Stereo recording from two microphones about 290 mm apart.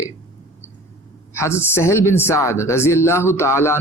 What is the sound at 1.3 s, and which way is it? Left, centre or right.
Speech, centre.